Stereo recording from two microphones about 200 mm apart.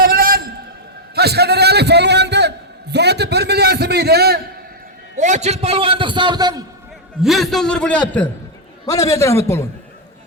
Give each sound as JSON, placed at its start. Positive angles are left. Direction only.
{"t": 0.0, "sound": "a sound", "side_deg": -50}
{"t": 2.9, "sound": "a man's voice", "side_deg": -55}
{"t": 5.2, "sound": "a man's voice", "side_deg": -35}
{"t": 7.2, "sound": "a man's voice", "side_deg": 0}
{"t": 8.9, "sound": "a man's voice", "side_deg": 15}